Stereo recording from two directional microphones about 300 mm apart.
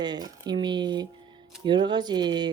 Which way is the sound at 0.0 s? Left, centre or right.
Centre.